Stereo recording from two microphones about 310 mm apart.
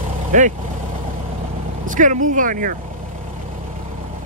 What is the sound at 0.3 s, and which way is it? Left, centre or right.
Speech, right.